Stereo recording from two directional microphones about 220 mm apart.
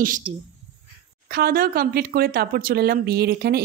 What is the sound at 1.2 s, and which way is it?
Speech, 45° right (ahead or behind).